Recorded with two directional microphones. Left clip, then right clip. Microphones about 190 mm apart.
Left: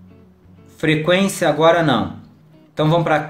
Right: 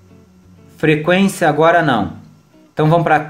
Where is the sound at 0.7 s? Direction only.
35° right (ahead or behind).